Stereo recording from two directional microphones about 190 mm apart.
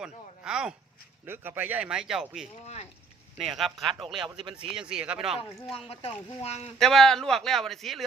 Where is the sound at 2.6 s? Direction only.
35° left (ahead or behind).